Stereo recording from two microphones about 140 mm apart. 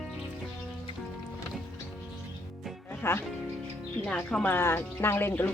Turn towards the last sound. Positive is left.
turn(degrees=15)  # may be behind; listen again after turning